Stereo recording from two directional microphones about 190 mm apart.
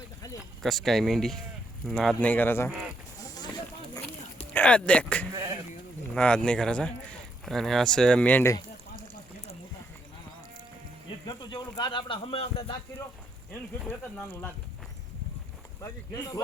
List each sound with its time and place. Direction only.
0.6 s speech: centre (ahead or behind)
4.5 s speech: 5° left (ahead or behind)
11.3 s speech: 20° left (ahead or behind)
15.8 s speech: 20° left (ahead or behind)